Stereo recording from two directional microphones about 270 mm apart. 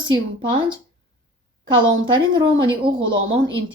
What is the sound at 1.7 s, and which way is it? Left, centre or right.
A woman's voice, centre.